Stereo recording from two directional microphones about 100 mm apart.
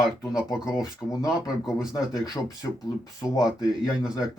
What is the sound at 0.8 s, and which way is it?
Speech, 35° left (ahead or behind).